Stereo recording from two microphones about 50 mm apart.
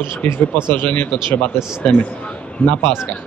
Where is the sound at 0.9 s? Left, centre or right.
Left.